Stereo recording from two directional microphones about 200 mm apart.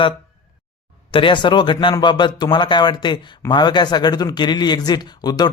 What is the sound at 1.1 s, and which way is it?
Speech, 25° left (ahead or behind).